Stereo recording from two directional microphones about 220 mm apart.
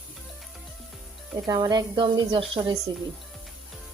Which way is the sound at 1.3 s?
15° right (ahead or behind).